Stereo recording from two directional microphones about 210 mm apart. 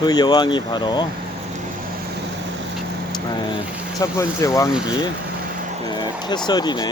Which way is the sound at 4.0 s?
15° left (ahead or behind).